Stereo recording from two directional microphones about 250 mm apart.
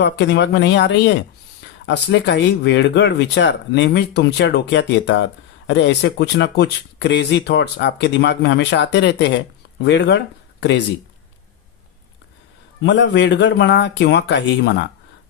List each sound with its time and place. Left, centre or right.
0.0 s speech: left
12.8 s speech: left